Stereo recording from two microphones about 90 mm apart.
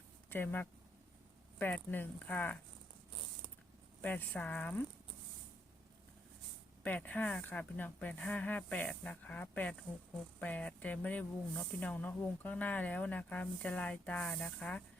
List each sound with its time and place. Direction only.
0.3 s speech: 20° left (ahead or behind)
1.9 s speech: 20° left (ahead or behind)
4.0 s speech: 20° left (ahead or behind)
6.8 s speech: 15° left (ahead or behind)